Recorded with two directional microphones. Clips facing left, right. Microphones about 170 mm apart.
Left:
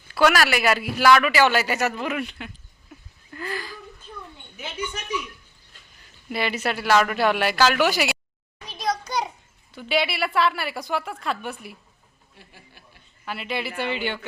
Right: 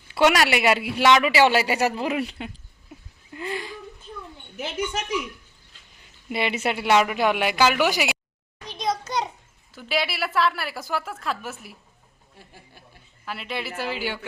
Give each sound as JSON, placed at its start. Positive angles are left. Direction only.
{"t": 0.1, "sound": "a man's voice", "side_deg": -20}
{"t": 6.2, "sound": "a woman's voice", "side_deg": -20}
{"t": 8.6, "sound": "a sound", "side_deg": 0}
{"t": 9.7, "sound": "a woman's voice", "side_deg": 0}
{"t": 13.2, "sound": "a woman's voice", "side_deg": 0}